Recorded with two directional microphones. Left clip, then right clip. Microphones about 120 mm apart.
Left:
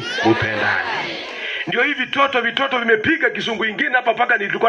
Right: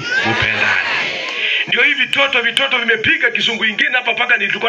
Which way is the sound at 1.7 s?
35° left (ahead or behind).